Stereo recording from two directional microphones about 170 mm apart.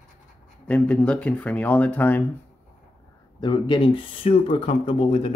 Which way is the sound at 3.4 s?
30° left (ahead or behind).